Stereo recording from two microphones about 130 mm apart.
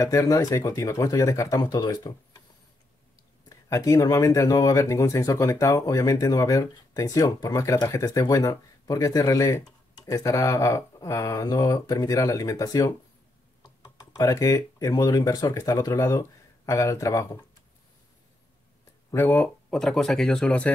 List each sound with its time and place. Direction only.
0.0 s speech: 25° left (ahead or behind)
3.4 s speech: 25° left (ahead or behind)
19.0 s speech: 15° left (ahead or behind)